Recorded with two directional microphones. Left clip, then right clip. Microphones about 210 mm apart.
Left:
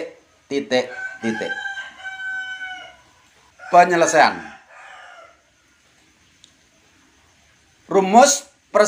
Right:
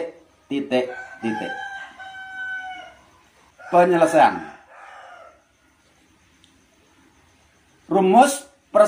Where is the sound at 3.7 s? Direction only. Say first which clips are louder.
Left 2 dB; 55° left (ahead or behind).